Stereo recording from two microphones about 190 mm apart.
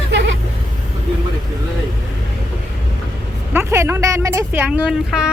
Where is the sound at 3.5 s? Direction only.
10° right (ahead or behind).